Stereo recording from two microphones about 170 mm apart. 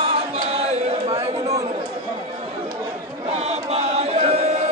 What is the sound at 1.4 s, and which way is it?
Chatter, 20° right (ahead or behind).